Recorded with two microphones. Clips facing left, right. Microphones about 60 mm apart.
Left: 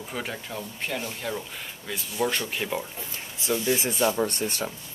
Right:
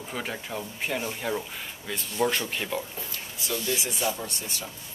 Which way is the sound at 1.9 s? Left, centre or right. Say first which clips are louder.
Right 1 dB; centre.